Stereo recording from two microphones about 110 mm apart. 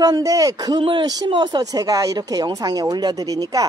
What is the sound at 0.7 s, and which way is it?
Speech, 50° right (ahead or behind).